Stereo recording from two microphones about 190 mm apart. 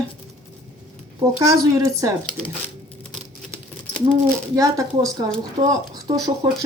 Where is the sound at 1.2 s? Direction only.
15° right (ahead or behind).